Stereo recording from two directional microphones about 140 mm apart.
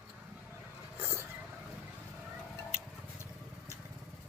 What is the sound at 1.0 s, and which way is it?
Vehicle, 15° right (ahead or behind).